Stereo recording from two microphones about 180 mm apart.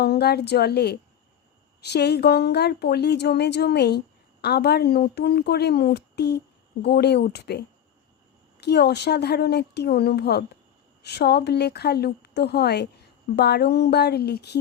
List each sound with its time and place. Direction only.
0.0 s speech: 65° left (ahead or behind)
8.6 s speech: 65° left (ahead or behind)